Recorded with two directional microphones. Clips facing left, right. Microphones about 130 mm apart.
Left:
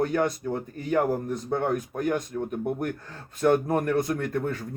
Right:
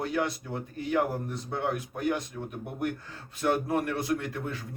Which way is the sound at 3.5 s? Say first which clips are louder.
Left 4 dB; 45° left (ahead or behind).